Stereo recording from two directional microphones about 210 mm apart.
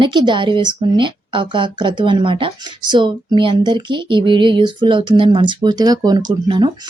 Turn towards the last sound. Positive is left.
turn(degrees=-20)  # may be behind; listen again after turning